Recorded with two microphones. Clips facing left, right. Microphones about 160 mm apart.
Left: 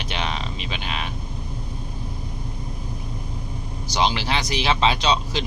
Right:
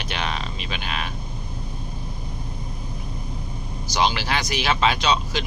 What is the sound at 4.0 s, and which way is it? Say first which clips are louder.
Speech: even; 25° left (ahead or behind).